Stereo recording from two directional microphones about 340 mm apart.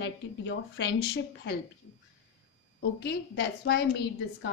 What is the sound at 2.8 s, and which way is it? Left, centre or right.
A woman's voice, left.